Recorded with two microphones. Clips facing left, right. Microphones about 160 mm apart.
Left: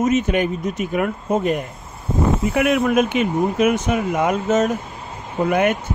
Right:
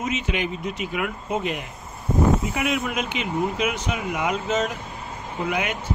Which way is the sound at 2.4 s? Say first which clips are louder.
Left 8 dB; 60° left (ahead or behind).